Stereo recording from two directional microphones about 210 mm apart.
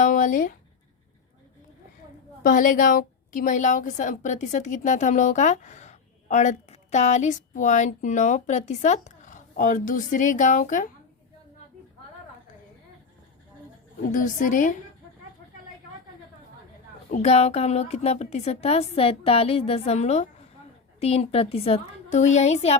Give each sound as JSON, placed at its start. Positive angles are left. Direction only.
{"t": 0.0, "sound": "a sound", "side_deg": 40}
{"t": 2.4, "sound": "a woman's voice", "side_deg": 40}
{"t": 14.1, "sound": "a woman's voice", "side_deg": 40}
{"t": 17.1, "sound": "a woman's voice", "side_deg": 30}